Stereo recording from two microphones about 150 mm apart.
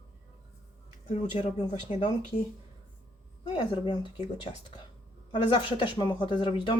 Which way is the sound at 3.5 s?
30° left (ahead or behind).